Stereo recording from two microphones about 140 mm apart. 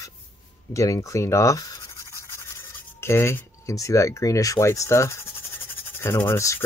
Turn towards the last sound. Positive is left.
turn(degrees=20)  # may be behind; listen again after turning